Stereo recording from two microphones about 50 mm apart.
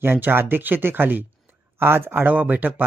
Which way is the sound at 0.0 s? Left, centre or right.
Right.